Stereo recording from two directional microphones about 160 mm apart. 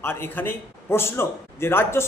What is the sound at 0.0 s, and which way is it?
A man's voice, 15° left (ahead or behind).